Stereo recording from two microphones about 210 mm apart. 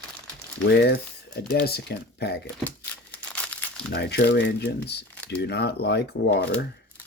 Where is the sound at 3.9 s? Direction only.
55° left (ahead or behind).